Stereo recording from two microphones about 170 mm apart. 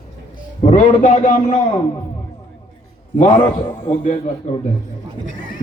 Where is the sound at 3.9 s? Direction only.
50° left (ahead or behind).